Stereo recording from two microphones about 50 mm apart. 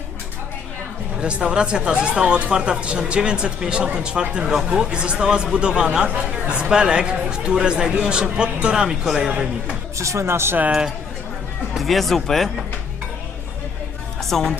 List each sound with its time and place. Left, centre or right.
1.2 s speech: right
9.3 s speech: right
10.0 s speech: right
10.7 s speech: centre
11.7 s speech: centre
14.2 s speech: centre